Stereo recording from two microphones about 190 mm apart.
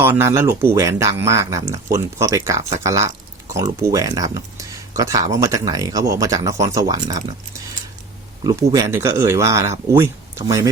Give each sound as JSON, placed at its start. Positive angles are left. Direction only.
{"t": 0.0, "sound": "speech", "side_deg": -10}
{"t": 8.4, "sound": "speech", "side_deg": -20}